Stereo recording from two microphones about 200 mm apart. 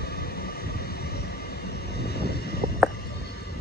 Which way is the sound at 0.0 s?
50° left (ahead or behind).